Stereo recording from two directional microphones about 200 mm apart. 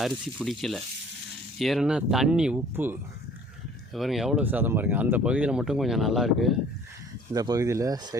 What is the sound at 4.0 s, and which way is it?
Speech, centre (ahead or behind).